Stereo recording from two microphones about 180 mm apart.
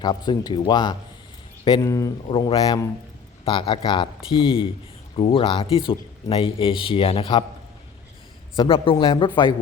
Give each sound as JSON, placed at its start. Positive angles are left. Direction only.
{"t": 0.0, "sound": "speech", "side_deg": 25}
{"t": 8.5, "sound": "speech", "side_deg": 30}